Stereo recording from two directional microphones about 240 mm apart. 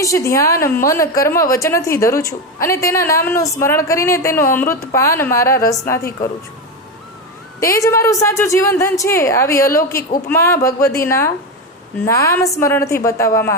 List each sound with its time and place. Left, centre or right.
0.0 s a woman's voice: centre
7.6 s a woman's voice: centre
10.0 s speech: left
10.2 s a woman's voice: centre